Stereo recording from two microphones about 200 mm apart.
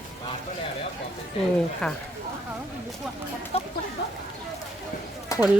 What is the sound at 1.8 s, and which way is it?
Speech, 5° left (ahead or behind).